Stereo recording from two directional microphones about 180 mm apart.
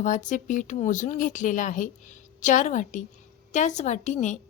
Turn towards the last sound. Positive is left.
turn(degrees=45)  # may be behind; listen again after turning